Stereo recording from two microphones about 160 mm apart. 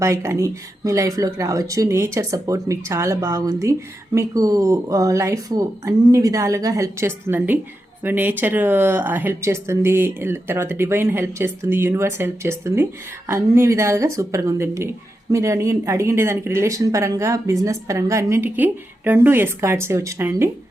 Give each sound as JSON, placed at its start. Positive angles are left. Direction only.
{"t": 0.0, "sound": "speech", "side_deg": -15}